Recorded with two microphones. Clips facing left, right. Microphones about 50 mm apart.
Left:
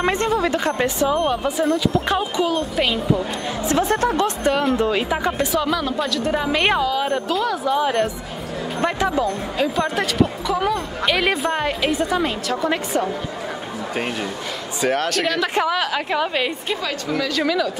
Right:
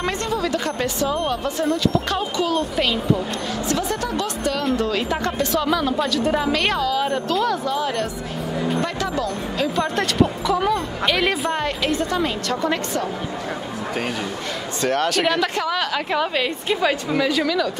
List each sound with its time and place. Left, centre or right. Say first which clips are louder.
0.0 s a woman's voice: left 4 dB; left; by 3.2 s centre
3.6 s speech: left 7 dB; left
4.7 s speech: left 2 dB; centre
6.5 s a woman's voice: left 2 dB; centre
6.9 s speech: even; centre
7.7 s a woman's voice: left 4 dB; centre
9.6 s speech: left 1 dB; centre
14.8 s speech: even; centre
16.8 s a woman's voice: right 5 dB; centre
17.4 s speech: left 1 dB; centre